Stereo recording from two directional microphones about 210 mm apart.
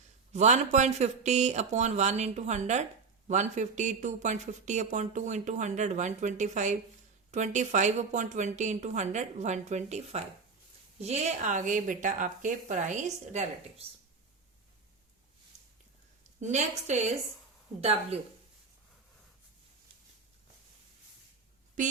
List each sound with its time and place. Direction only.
0.3 s speech: 35° right (ahead or behind)
16.4 s speech: 35° right (ahead or behind)